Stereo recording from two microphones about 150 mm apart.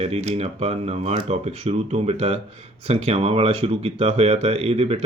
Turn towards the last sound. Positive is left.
turn(degrees=-45)  # may be behind; listen again after turning